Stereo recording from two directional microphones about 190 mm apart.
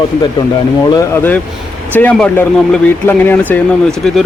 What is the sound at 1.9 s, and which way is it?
Speech, 5° left (ahead or behind).